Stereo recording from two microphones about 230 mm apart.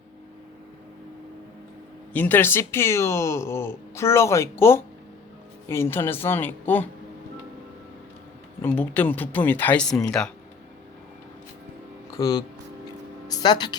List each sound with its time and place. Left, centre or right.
2.1 s speech: centre
8.6 s speech: centre
12.1 s speech: centre
13.2 s a sound: centre